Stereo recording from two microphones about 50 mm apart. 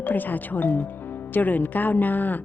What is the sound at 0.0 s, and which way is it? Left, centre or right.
A woman's voice, left.